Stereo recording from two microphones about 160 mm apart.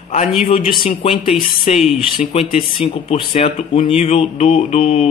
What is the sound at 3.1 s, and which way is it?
A man's voice, 40° left (ahead or behind).